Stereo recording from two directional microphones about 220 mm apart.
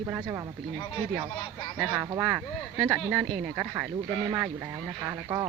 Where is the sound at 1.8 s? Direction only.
5° right (ahead or behind).